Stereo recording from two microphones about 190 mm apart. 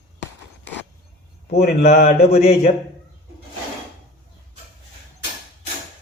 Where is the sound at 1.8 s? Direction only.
40° left (ahead or behind).